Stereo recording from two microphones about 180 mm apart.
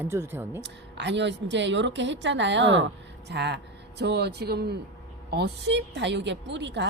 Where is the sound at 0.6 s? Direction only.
75° right (ahead or behind).